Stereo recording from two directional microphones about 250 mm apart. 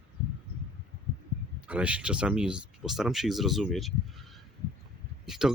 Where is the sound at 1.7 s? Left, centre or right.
Centre.